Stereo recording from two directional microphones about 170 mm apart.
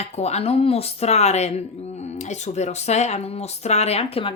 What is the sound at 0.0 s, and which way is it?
Speech, 40° left (ahead or behind).